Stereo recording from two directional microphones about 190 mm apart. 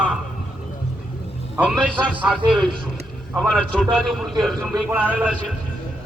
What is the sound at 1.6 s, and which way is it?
Speech, 5° right (ahead or behind).